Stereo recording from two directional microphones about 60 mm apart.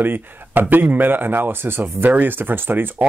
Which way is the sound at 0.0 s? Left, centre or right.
Right.